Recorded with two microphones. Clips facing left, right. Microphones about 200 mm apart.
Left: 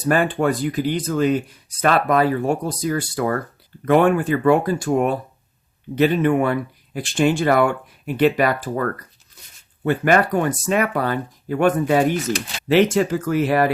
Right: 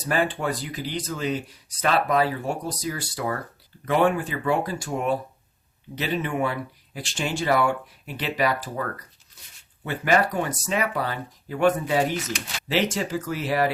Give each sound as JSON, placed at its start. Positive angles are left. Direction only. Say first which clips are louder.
{"t": 0.0, "sound": "speech", "louder": "left 6 dB", "side_deg": 50}